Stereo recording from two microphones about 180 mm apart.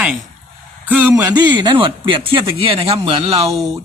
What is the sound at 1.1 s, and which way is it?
Speech, 20° right (ahead or behind).